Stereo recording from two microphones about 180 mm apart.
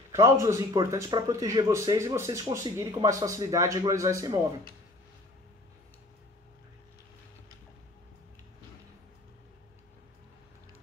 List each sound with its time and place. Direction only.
0.1 s speech: 15° right (ahead or behind)